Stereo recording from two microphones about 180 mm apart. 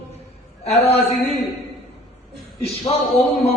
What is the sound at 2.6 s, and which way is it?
Speech, 35° left (ahead or behind).